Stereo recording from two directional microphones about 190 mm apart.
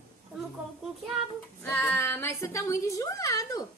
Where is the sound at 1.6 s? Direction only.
10° left (ahead or behind).